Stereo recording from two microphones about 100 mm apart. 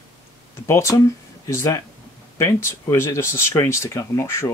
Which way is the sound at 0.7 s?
30° left (ahead or behind).